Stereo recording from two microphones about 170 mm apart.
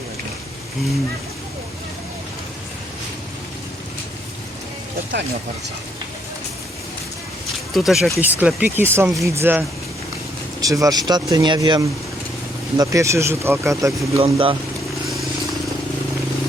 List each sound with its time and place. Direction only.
7.7 s speech: centre (ahead or behind); by 14.2 s 15° right (ahead or behind)
14.2 s speech: 30° right (ahead or behind)